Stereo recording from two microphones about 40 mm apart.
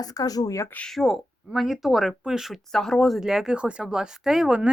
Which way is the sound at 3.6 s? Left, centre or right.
Right.